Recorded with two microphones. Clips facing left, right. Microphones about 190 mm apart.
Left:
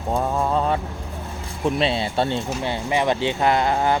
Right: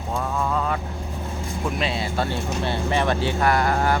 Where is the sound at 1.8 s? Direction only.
30° left (ahead or behind).